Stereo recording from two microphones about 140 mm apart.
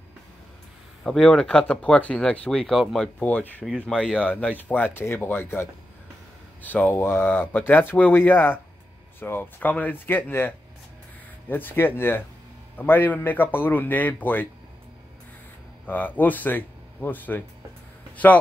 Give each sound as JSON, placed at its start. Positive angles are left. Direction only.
{"t": 1.0, "sound": "speech", "side_deg": 5}
{"t": 3.2, "sound": "speech", "side_deg": 10}
{"t": 15.9, "sound": "speech", "side_deg": 10}